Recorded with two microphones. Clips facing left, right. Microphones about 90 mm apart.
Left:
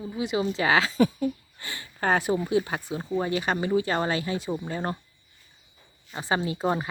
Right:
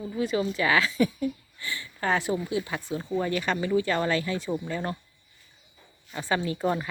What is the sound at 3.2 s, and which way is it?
Speech, 20° left (ahead or behind).